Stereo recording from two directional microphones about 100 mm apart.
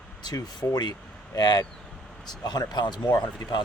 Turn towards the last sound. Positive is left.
turn(degrees=45)  # may be behind; listen again after turning